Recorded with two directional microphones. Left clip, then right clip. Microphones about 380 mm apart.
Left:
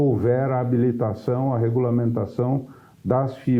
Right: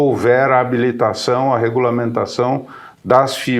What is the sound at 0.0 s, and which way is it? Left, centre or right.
Speech, centre.